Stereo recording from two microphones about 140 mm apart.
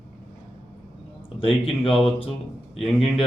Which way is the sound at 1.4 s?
40° left (ahead or behind).